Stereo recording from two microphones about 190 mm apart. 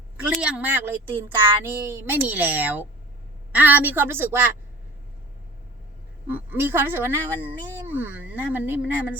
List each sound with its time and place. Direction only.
0.3 s speech: 5° right (ahead or behind)
6.2 s speech: 10° right (ahead or behind)